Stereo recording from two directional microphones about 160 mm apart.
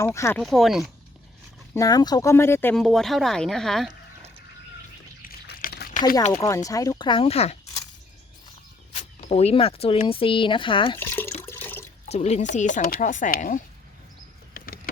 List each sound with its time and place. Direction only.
0.0 s speech: 15° left (ahead or behind)
0.3 s speech: centre (ahead or behind)
1.7 s speech: 20° left (ahead or behind)
2.7 s speech: 5° left (ahead or behind)
5.2 s a sound: 65° left (ahead or behind); by 5.9 s 80° left
6.4 s speech: 20° left (ahead or behind); by 7.5 s 40° left (ahead or behind)
8.9 s speech: 40° left (ahead or behind)
10.9 s water: 15° left (ahead or behind)
12.0 s speech: 45° left (ahead or behind)